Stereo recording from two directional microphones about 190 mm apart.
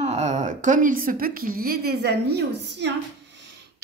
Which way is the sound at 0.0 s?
35° right (ahead or behind).